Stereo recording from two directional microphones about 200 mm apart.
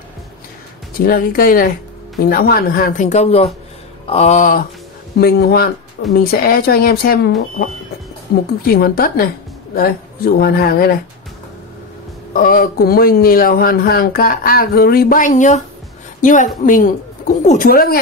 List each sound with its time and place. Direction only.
1.0 s speech: 45° left (ahead or behind)
5.2 s speech: 50° left (ahead or behind)
8.6 s speech: 50° left (ahead or behind)
12.4 s a woman's voice: 45° left (ahead or behind)